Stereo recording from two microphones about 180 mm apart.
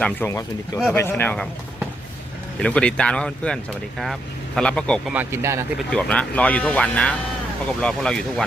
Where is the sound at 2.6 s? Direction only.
5° left (ahead or behind).